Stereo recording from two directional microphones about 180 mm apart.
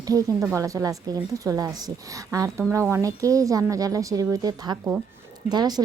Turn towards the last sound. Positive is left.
turn(degrees=-20)  # may be behind; listen again after turning